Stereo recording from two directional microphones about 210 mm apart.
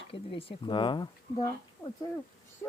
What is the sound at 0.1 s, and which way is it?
Speech, 25° left (ahead or behind).